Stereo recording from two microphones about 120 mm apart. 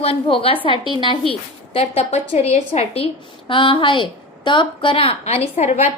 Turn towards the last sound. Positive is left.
turn(degrees=65)  # may be behind; listen again after turning